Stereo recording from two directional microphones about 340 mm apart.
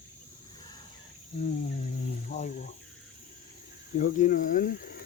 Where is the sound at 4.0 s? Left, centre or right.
Left.